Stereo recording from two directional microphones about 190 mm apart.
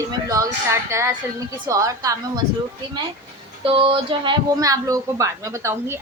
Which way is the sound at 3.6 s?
25° right (ahead or behind).